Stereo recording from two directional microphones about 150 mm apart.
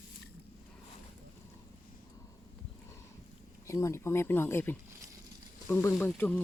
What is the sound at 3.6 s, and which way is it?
Speech, 20° left (ahead or behind).